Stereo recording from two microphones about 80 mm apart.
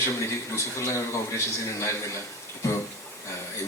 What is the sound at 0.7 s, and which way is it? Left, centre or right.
A man's voice, left.